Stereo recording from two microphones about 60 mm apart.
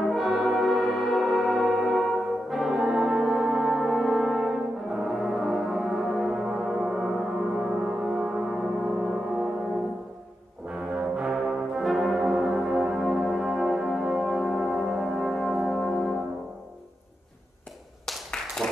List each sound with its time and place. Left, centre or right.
0.1 s brass instrument: centre
6.2 s music: centre
10.7 s brass instrument: centre
11.8 s brass instrument: centre
18.6 s a sound: centre